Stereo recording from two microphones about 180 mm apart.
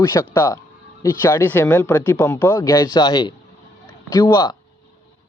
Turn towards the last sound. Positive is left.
turn(degrees=25)  # may be behind; listen again after turning